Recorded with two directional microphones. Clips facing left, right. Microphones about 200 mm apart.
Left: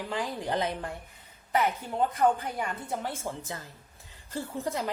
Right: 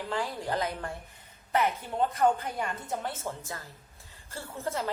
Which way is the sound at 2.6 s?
10° left (ahead or behind).